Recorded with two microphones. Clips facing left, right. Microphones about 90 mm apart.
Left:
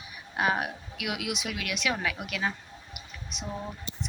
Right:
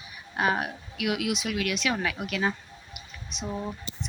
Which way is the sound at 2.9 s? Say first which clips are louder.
Even; 5° left (ahead or behind).